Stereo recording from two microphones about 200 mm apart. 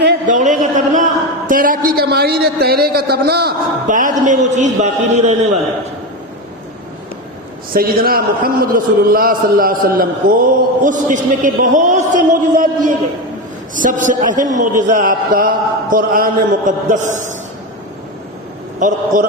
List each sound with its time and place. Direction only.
0.3 s a man's voice: 40° right (ahead or behind)
7.7 s a man's voice: 45° right (ahead or behind)
18.8 s a man's voice: 40° right (ahead or behind)